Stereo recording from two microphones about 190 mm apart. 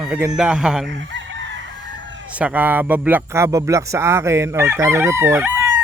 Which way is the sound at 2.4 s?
10° right (ahead or behind).